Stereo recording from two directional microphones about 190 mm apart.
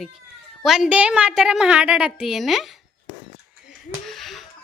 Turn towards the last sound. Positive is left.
turn(degrees=0)  # may be behind; listen again after turning